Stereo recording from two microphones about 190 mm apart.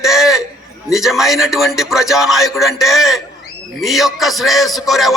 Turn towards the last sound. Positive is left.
turn(degrees=0)  # may be behind; listen again after turning